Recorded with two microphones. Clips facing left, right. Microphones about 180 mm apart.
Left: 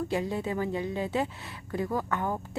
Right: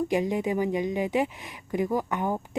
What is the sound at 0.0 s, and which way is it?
A woman's voice, 15° right (ahead or behind).